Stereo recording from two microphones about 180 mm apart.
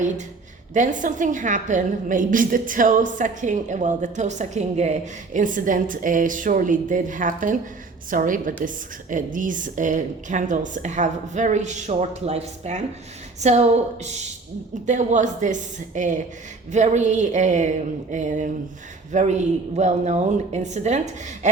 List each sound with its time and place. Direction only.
0.7 s a woman's voice: 45° right (ahead or behind)